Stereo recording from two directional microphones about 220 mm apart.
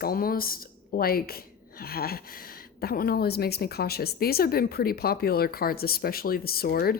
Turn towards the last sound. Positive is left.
turn(degrees=45)  # may be behind; listen again after turning